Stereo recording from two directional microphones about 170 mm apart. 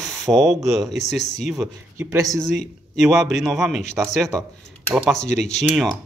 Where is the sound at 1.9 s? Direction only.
15° right (ahead or behind).